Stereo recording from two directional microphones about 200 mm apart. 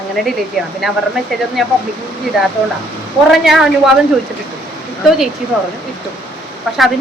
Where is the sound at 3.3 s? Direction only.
Centre (ahead or behind).